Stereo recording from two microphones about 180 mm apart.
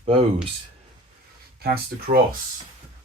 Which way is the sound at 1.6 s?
60° right (ahead or behind).